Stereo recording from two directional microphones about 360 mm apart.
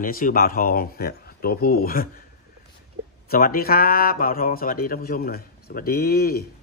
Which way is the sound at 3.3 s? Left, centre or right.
Left.